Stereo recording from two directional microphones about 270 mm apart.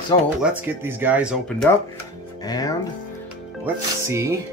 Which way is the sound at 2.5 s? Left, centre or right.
Centre.